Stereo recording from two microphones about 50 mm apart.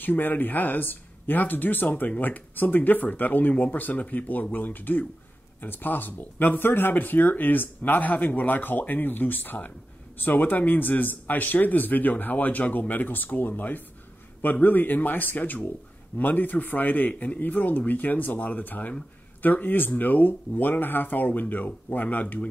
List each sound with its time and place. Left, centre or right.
0.0 s speech: left